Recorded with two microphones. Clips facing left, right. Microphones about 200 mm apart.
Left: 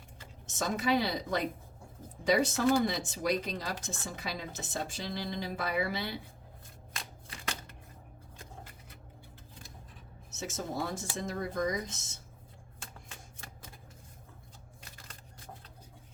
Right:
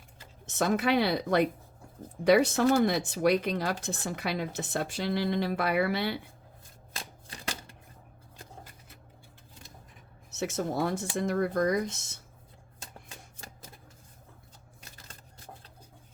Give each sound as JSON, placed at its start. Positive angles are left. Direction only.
{"t": 0.4, "sound": "a woman's voice", "side_deg": -65}
{"t": 7.3, "sound": "shuffling cards", "side_deg": -30}
{"t": 10.3, "sound": "a woman's voice", "side_deg": -65}